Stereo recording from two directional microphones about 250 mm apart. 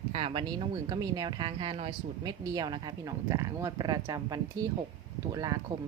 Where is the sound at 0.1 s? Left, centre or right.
Right.